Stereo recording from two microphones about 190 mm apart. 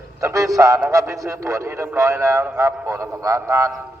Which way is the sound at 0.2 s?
15° right (ahead or behind).